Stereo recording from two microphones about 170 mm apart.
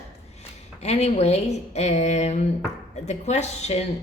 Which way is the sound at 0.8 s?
40° left (ahead or behind).